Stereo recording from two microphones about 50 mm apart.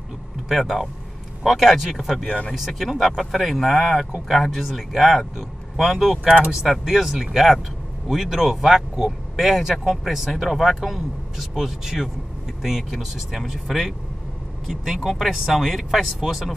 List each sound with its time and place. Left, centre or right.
0.5 s speech: centre
2.2 s speech: left
2.5 s speech: centre
15.0 s speech: centre